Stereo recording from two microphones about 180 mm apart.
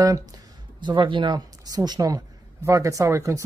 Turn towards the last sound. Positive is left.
turn(degrees=-15)  # may be behind; listen again after turning